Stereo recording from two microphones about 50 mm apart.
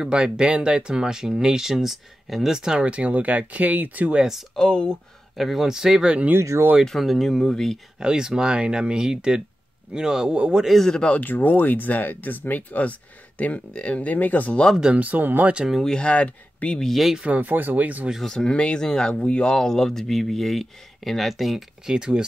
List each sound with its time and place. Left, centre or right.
0.0 s speech: centre
2.9 s speech: right
4.6 s speech: centre
5.3 s speech: centre
6.8 s speech: centre
8.0 s speech: centre
10.8 s speech: centre
11.1 s speech: left
15.0 s speech: right
15.8 s speech: centre
16.8 s speech: centre
17.2 s speech: right
18.2 s speech: centre
21.8 s speech: centre